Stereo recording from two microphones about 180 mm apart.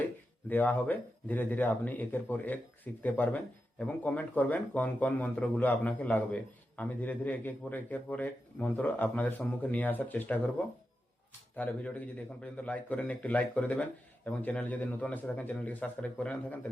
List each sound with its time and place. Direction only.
0.4 s a man's voice: 10° left (ahead or behind)